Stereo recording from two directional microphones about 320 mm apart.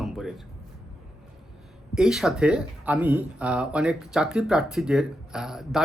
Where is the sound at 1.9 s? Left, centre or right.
Centre.